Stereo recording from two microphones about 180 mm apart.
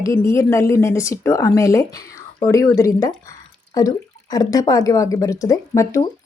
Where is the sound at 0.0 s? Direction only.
15° left (ahead or behind).